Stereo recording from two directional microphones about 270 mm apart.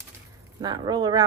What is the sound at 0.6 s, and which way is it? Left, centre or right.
Speech, centre.